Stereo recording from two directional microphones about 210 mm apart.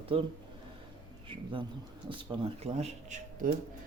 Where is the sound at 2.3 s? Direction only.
30° right (ahead or behind).